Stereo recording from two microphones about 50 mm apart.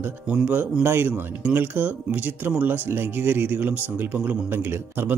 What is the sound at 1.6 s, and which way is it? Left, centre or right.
Speech, right.